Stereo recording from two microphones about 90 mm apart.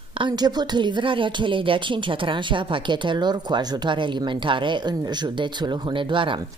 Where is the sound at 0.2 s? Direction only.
50° right (ahead or behind).